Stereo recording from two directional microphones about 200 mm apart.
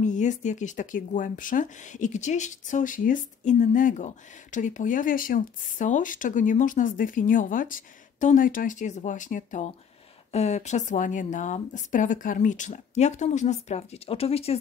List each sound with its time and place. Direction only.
0.0 s speech: 40° left (ahead or behind)